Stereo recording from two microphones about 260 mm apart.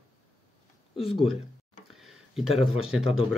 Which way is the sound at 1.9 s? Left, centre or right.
Centre.